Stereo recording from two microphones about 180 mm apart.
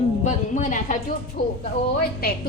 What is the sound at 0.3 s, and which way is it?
Speech, 45° left (ahead or behind).